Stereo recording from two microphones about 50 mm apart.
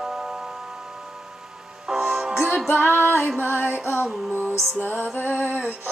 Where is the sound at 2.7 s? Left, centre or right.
Left.